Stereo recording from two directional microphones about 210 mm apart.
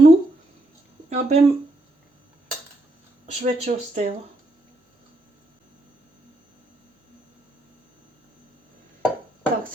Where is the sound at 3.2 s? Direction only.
35° right (ahead or behind).